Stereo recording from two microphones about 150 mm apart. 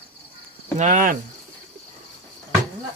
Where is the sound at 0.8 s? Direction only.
60° right (ahead or behind).